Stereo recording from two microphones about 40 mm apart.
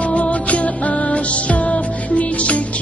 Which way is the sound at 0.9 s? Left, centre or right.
Left.